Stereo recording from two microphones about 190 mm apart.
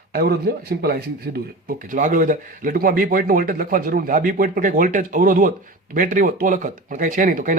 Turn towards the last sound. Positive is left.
turn(degrees=-45)  # may be behind; listen again after turning